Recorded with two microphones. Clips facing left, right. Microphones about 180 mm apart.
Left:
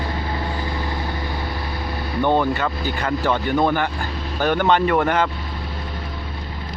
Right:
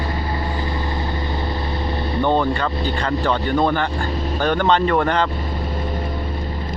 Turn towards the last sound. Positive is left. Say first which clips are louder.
# even
turn(degrees=5)  # may be behind; listen again after turning